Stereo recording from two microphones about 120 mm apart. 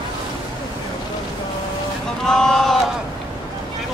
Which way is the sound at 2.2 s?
5° left (ahead or behind).